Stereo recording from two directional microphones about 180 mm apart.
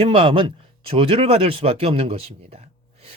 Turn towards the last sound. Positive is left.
turn(degrees=-35)  # may be behind; listen again after turning